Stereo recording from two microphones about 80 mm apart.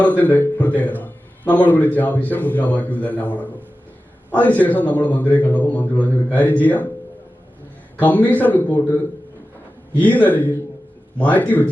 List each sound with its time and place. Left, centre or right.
0.0 s a man's voice: centre
8.0 s a man's voice: left